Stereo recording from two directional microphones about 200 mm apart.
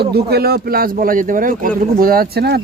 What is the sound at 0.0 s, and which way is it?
Speech, 55° right (ahead or behind).